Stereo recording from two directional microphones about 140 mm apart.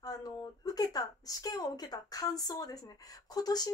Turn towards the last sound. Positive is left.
turn(degrees=30)  # may be behind; listen again after turning